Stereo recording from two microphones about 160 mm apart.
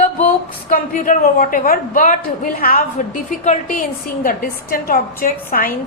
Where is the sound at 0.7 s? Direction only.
55° left (ahead or behind).